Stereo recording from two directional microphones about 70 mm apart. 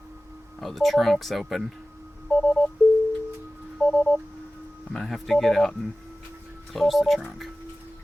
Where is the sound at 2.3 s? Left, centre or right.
Centre.